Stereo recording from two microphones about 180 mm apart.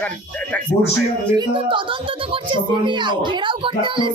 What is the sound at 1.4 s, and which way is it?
Speech, 30° right (ahead or behind).